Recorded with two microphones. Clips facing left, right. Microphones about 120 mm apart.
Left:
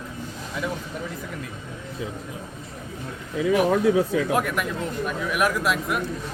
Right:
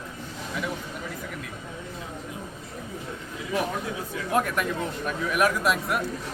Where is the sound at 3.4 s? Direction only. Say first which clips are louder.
Left 10 dB; 70° left (ahead or behind).